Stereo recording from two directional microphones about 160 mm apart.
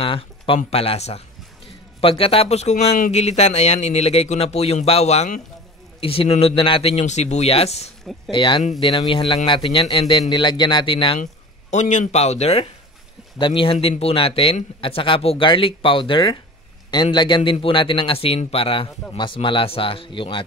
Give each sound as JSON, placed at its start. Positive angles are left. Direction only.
{"t": 0.0, "sound": "a sound", "side_deg": 35}
{"t": 0.6, "sound": "a man's voice", "side_deg": 40}
{"t": 8.3, "sound": "speech", "side_deg": 30}
{"t": 11.7, "sound": "a man's voice", "side_deg": 50}